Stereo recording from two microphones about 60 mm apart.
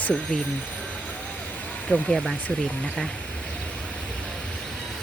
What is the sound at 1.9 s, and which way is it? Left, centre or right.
Speech, centre.